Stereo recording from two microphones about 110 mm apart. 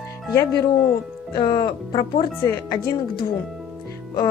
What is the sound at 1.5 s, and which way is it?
Speech, 35° left (ahead or behind).